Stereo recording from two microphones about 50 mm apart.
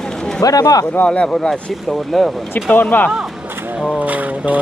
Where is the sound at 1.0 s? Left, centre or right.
Centre.